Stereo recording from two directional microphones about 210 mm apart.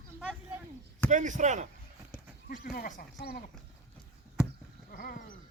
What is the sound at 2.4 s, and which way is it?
Speech, 45° left (ahead or behind).